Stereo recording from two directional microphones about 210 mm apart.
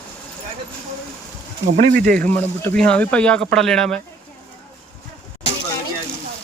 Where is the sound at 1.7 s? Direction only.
45° right (ahead or behind).